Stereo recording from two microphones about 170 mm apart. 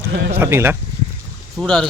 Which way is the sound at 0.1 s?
70° right (ahead or behind).